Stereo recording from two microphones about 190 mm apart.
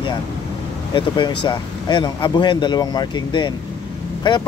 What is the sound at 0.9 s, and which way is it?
Speech, 25° left (ahead or behind).